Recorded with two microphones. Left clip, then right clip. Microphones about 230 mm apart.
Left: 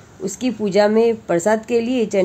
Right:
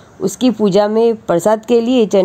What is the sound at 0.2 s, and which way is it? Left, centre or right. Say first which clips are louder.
Speech: right 8 dB; right.